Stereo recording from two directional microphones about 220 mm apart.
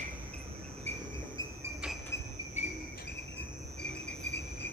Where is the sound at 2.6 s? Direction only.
30° left (ahead or behind).